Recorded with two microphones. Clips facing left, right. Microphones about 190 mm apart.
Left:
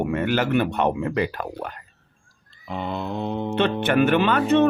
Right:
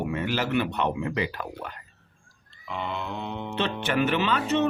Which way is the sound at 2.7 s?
40° left (ahead or behind).